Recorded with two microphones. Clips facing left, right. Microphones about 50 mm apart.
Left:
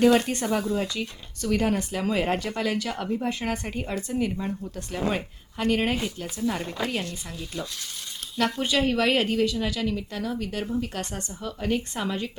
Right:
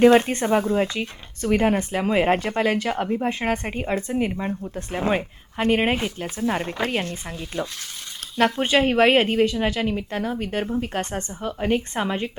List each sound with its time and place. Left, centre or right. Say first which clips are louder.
0.0 s speech: right 5 dB; right